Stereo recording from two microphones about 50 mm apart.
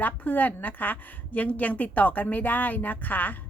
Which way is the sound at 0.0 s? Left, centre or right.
Left.